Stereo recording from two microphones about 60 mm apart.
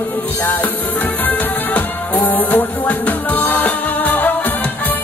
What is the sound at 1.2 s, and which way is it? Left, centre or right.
Music, left.